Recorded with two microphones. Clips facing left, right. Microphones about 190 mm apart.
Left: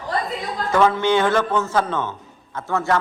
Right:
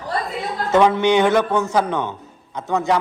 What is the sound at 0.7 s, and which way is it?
A man's voice, 20° right (ahead or behind).